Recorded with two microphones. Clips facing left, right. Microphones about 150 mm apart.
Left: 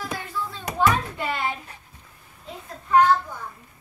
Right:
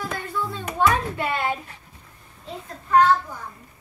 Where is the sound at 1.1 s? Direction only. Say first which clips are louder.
Right 2 dB; 55° right (ahead or behind).